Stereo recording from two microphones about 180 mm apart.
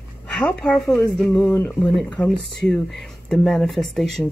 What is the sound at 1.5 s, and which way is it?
Speech, 15° left (ahead or behind).